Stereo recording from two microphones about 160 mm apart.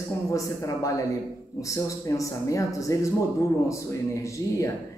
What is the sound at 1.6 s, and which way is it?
Speech, 20° left (ahead or behind).